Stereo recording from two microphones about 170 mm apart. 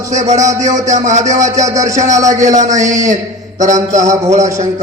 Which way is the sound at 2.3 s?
45° right (ahead or behind).